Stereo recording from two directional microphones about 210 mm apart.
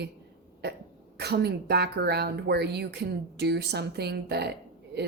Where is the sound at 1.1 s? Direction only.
50° right (ahead or behind).